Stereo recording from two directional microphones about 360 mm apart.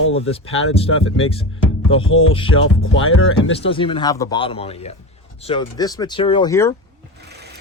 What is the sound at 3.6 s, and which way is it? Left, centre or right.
Speech, centre.